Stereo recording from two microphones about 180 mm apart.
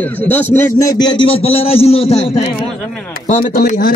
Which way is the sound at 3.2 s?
55° left (ahead or behind).